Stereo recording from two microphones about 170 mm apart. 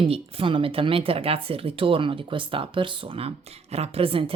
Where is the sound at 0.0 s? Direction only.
30° right (ahead or behind).